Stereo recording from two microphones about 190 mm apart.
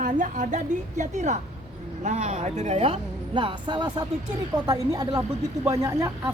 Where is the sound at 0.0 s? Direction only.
40° right (ahead or behind); by 6.1 s 15° right (ahead or behind).